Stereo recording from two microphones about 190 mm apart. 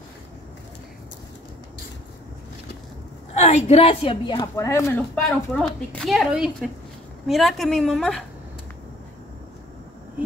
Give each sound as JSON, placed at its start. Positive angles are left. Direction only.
{"t": 3.3, "sound": "a woman's voice", "side_deg": 35}
{"t": 5.1, "sound": "a woman's voice", "side_deg": 5}